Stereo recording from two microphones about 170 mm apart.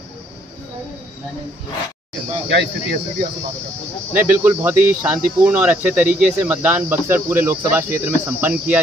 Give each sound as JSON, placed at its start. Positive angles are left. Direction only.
{"t": 2.5, "sound": "speech", "side_deg": -75}
{"t": 4.1, "sound": "speech", "side_deg": -10}